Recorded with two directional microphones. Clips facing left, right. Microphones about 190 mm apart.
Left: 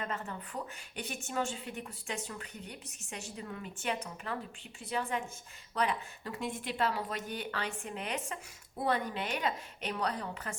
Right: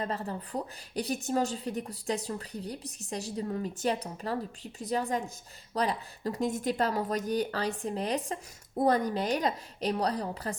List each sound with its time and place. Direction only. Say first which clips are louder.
0.0 s a woman's voice: right 5 dB; 35° right (ahead or behind)